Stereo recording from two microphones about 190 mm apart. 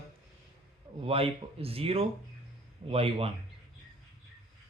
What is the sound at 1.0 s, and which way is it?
Speech, 30° right (ahead or behind).